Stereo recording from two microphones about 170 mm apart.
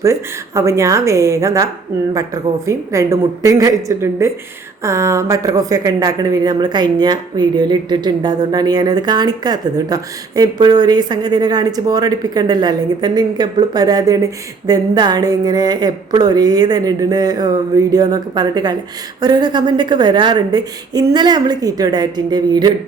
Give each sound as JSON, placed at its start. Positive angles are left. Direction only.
{"t": 0.0, "sound": "speech", "side_deg": -20}